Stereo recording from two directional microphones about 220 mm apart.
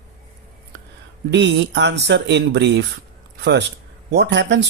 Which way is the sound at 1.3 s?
55° right (ahead or behind).